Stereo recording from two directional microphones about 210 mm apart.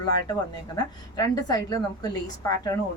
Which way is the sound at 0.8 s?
15° left (ahead or behind).